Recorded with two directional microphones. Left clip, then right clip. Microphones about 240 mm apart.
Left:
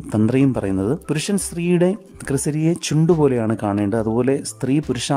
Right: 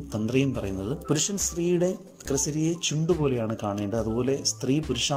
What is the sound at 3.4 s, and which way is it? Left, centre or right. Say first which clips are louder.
Speech: left 9 dB; left.